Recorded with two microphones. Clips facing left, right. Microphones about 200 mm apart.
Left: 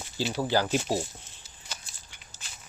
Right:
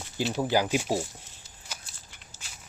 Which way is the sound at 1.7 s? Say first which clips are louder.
Even; 10° right (ahead or behind).